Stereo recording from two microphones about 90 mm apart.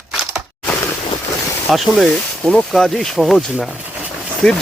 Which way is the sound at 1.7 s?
Centre (ahead or behind).